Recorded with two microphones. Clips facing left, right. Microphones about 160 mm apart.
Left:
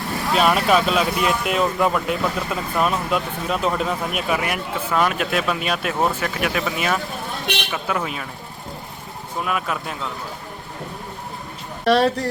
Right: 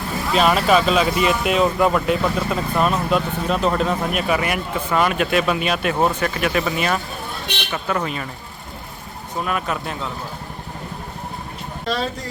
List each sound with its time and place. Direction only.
0.3 s speech: centre (ahead or behind)
9.4 s speech: 5° left (ahead or behind)
11.9 s speech: 70° left (ahead or behind)